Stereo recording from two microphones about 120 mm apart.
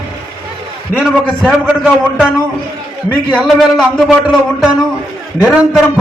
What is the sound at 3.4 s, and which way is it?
A man's voice, centre (ahead or behind).